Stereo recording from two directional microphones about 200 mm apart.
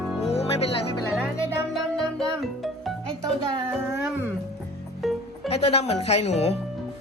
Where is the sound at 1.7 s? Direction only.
Centre (ahead or behind).